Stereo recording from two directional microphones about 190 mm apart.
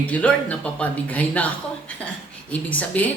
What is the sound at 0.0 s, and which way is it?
A man's voice, 5° left (ahead or behind).